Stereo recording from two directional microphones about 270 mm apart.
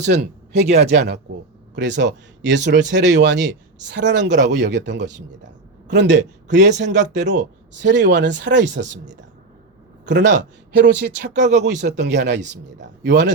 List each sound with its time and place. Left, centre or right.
0.1 s speech: right
6.8 s speech: right
7.8 s speech: right
10.1 s speech: right